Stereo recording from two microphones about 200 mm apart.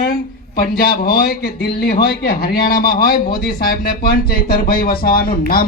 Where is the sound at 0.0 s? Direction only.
50° left (ahead or behind).